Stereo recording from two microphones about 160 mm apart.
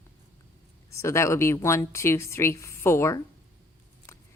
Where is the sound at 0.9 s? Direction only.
15° left (ahead or behind).